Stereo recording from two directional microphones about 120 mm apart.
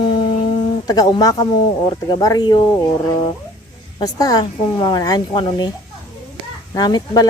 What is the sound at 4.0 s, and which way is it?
Speech, 30° left (ahead or behind).